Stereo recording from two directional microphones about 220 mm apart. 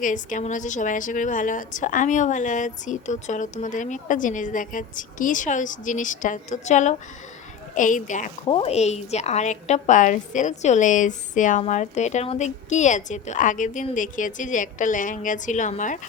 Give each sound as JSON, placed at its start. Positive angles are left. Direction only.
{"t": 0.0, "sound": "a woman's voice", "side_deg": 35}